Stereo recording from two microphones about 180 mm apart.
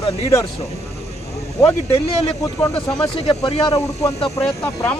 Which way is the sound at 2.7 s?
25° left (ahead or behind).